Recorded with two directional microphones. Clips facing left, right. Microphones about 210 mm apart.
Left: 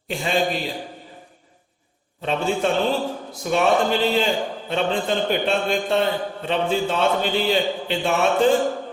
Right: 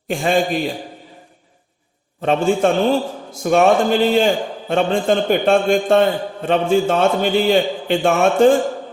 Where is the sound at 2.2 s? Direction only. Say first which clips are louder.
Right 6 dB; 50° right (ahead or behind).